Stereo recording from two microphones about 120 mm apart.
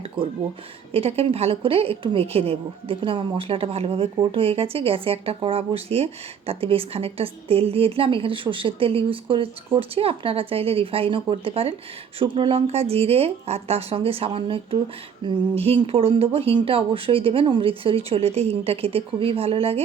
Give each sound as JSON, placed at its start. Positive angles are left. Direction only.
{"t": 0.2, "sound": "speech", "side_deg": -15}
{"t": 0.9, "sound": "a woman's voice", "side_deg": -55}
{"t": 15.2, "sound": "a sound", "side_deg": -40}
{"t": 15.5, "sound": "a woman's voice", "side_deg": -55}